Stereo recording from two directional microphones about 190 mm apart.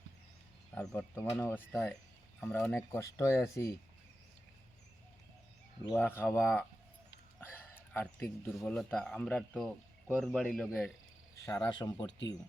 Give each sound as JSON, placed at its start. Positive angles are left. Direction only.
{"t": 0.8, "sound": "speech", "side_deg": 10}
{"t": 5.9, "sound": "speech", "side_deg": 10}
{"t": 7.4, "sound": "a sound", "side_deg": 10}
{"t": 8.5, "sound": "speech", "side_deg": 0}
{"t": 11.4, "sound": "speech", "side_deg": 15}